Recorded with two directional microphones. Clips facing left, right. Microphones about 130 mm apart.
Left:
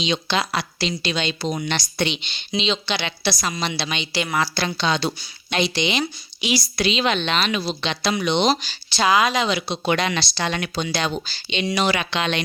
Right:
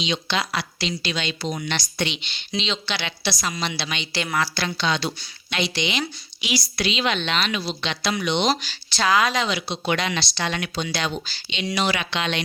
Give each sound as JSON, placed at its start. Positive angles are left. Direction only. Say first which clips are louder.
{"t": 0.0, "sound": "a woman's voice", "louder": "left 3 dB", "side_deg": 35}
{"t": 2.5, "sound": "speech", "louder": "left 4 dB", "side_deg": 15}
{"t": 3.5, "sound": "a woman's voice", "louder": "left 2 dB", "side_deg": 30}
{"t": 4.1, "sound": "speech", "louder": "left 2 dB", "side_deg": 5}
{"t": 4.5, "sound": "a woman's voice", "louder": "left 2 dB", "side_deg": 25}
{"t": 8.6, "sound": "speech", "louder": "left 3 dB", "side_deg": 20}
{"t": 9.5, "sound": "a woman's voice", "louder": "left 3 dB", "side_deg": 40}